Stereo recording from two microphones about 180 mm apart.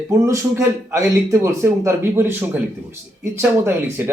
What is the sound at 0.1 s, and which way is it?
Speech, 15° right (ahead or behind).